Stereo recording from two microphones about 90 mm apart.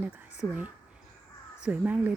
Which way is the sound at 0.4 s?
15° left (ahead or behind).